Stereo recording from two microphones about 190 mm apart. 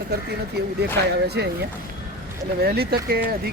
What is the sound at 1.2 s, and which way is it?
Speech, 60° right (ahead or behind).